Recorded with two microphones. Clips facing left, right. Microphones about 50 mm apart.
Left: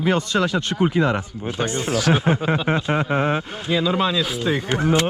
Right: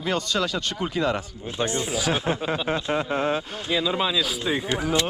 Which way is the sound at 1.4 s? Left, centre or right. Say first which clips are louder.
Left 2 dB; left.